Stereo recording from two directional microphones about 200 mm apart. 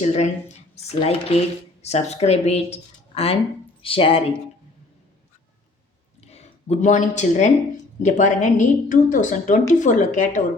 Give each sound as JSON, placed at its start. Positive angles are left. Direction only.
{"t": 0.0, "sound": "a woman's voice", "side_deg": 35}
{"t": 6.2, "sound": "a sound", "side_deg": 35}
{"t": 7.2, "sound": "a woman's voice", "side_deg": 35}